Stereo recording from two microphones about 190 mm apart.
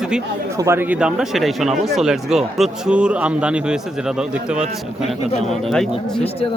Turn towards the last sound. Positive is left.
turn(degrees=0)  # may be behind; listen again after turning